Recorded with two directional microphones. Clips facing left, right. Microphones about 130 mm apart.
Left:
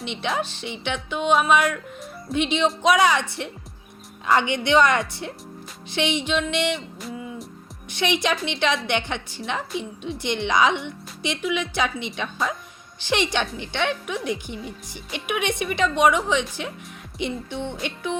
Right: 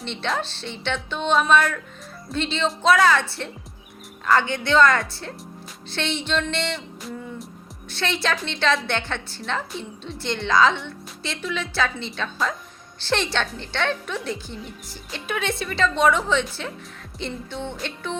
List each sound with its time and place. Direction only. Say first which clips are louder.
0.0 s a woman's voice: left 1 dB; 15° left (ahead or behind)
6.7 s a sound: left 1 dB; 5° left (ahead or behind)
7.9 s a woman's voice: left 2 dB; 15° left (ahead or behind)